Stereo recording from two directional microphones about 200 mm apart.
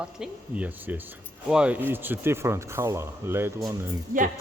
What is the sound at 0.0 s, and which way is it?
A woman's voice, 5° right (ahead or behind).